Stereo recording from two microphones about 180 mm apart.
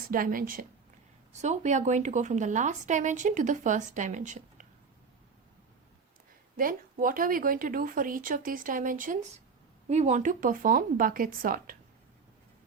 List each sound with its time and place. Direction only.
0.1 s a woman's voice: 50° right (ahead or behind)
1.3 s a woman's voice: 40° right (ahead or behind)
6.6 s a woman's voice: 50° right (ahead or behind)